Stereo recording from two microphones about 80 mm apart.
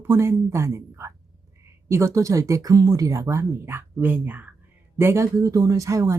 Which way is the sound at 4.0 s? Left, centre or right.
Right.